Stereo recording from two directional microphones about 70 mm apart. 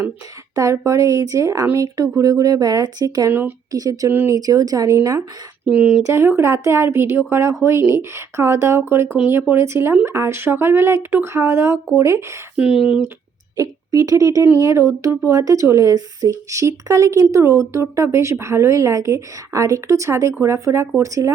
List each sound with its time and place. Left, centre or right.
0.5 s speech: right
4.9 s speech: right
5.6 s speech: centre
6.1 s speech: right
12.5 s speech: centre
13.6 s a woman's voice: right
16.3 s speech: right